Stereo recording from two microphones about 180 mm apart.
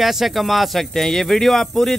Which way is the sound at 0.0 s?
Centre (ahead or behind).